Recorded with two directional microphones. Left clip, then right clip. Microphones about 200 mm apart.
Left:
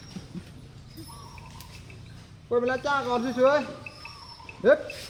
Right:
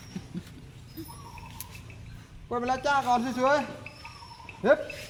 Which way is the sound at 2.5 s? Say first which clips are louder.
Left 2 dB; 50° right (ahead or behind).